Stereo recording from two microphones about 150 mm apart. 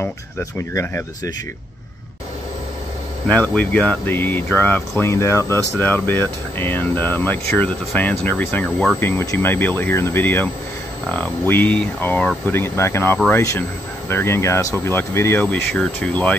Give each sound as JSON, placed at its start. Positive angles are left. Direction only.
{"t": 0.0, "sound": "speech", "side_deg": 15}
{"t": 3.3, "sound": "speech", "side_deg": 10}